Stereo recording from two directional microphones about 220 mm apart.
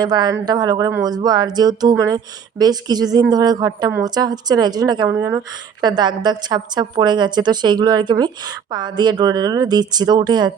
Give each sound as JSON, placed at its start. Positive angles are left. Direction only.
{"t": 0.0, "sound": "a woman's voice", "side_deg": -20}